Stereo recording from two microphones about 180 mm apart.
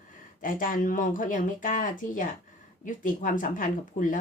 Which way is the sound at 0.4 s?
50° left (ahead or behind).